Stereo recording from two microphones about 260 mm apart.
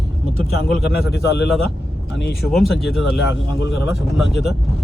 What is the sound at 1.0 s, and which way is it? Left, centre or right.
Speech, left.